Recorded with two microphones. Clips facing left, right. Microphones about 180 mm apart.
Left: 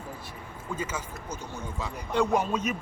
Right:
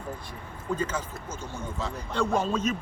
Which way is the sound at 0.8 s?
10° left (ahead or behind).